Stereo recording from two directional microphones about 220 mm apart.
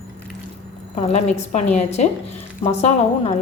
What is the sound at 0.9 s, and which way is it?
A woman's voice, 30° left (ahead or behind).